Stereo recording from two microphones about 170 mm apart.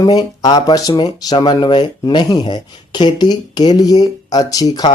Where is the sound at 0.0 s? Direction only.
20° left (ahead or behind).